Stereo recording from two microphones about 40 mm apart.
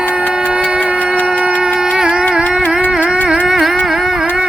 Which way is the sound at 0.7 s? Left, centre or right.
Right.